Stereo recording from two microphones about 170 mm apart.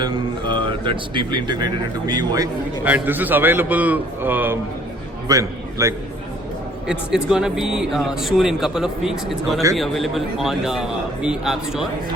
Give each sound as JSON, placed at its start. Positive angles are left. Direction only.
{"t": 0.0, "sound": "speech", "side_deg": -25}
{"t": 2.8, "sound": "a man's voice", "side_deg": -10}
{"t": 6.8, "sound": "speech", "side_deg": -5}